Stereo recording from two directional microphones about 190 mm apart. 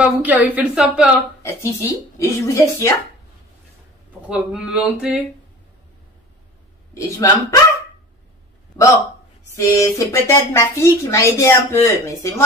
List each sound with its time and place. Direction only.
0.2 s a woman's voice: 10° right (ahead or behind)
1.4 s a woman's voice: 15° left (ahead or behind)
4.3 s speech: 5° right (ahead or behind)
6.9 s a woman's voice: 20° left (ahead or behind)
9.6 s a woman's voice: 15° left (ahead or behind)